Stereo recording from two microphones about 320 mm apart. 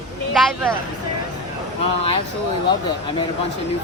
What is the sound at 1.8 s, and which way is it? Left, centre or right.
Speech, centre.